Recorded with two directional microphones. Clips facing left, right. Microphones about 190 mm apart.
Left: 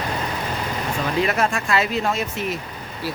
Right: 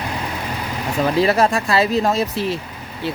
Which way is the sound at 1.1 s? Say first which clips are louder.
Right 5 dB; 35° right (ahead or behind).